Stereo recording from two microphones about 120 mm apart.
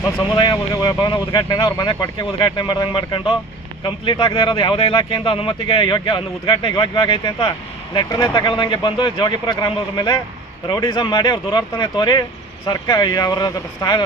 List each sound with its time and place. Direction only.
0.3 s speech: 40° left (ahead or behind)